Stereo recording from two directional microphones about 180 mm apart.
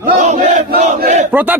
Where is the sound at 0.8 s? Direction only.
40° right (ahead or behind).